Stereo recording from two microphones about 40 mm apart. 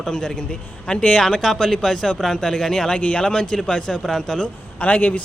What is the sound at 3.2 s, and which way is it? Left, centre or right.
Speech, centre.